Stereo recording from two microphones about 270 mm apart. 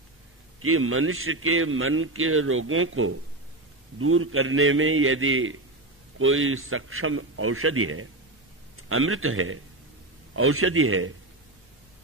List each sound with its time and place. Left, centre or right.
0.6 s a man's voice: right